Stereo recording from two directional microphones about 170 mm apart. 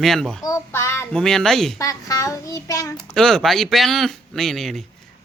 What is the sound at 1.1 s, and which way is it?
Speech, 5° left (ahead or behind).